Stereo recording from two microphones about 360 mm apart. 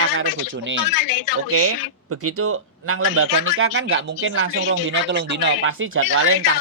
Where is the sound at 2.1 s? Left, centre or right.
Right.